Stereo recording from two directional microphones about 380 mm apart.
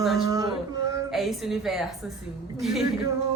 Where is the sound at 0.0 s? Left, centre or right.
Centre.